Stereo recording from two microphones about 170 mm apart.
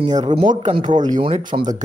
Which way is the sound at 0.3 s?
30° right (ahead or behind).